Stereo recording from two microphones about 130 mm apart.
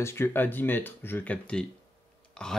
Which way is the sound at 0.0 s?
20° left (ahead or behind).